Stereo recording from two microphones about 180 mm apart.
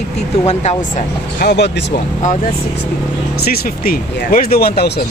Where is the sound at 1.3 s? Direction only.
70° left (ahead or behind).